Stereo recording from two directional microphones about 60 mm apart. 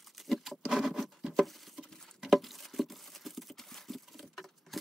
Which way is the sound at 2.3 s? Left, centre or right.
Centre.